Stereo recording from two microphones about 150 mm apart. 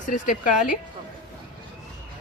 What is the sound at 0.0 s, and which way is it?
Speech, 60° left (ahead or behind).